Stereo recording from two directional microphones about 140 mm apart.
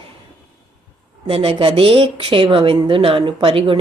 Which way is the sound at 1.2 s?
40° right (ahead or behind).